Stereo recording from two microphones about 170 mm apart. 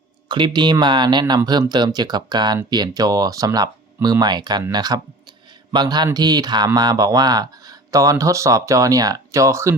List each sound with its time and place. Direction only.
0.3 s speech: 25° right (ahead or behind)